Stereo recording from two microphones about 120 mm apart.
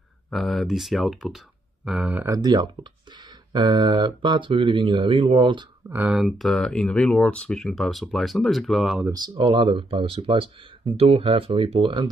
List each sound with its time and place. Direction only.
0.3 s speech: centre (ahead or behind)
2.1 s speech: 20° right (ahead or behind)
2.4 s speech: 40° right (ahead or behind)
5.9 s speech: 15° right (ahead or behind)
6.1 s speech: centre (ahead or behind)
9.1 s speech: 40° right (ahead or behind)